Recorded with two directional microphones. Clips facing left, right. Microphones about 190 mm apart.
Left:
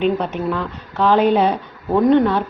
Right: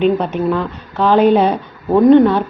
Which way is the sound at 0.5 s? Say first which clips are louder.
Right 4 dB; 30° right (ahead or behind).